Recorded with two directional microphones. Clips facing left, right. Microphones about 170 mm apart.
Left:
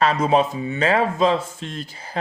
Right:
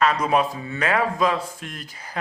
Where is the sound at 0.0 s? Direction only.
25° left (ahead or behind).